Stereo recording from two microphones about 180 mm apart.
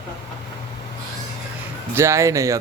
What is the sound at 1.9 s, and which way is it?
Speech, 15° right (ahead or behind).